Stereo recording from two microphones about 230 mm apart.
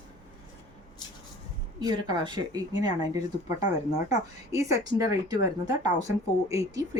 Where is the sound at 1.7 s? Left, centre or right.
Centre.